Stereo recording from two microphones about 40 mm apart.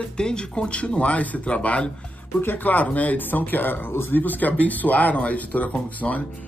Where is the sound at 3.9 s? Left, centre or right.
Left.